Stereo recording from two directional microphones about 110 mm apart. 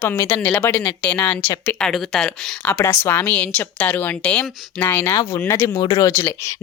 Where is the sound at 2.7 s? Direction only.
25° left (ahead or behind).